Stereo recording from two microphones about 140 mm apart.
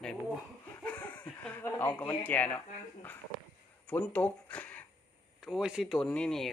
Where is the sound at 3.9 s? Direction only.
10° left (ahead or behind).